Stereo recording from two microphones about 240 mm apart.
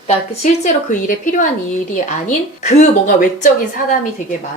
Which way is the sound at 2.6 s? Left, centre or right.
Left.